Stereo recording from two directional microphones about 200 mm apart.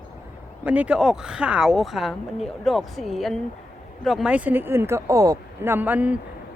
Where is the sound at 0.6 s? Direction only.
5° right (ahead or behind).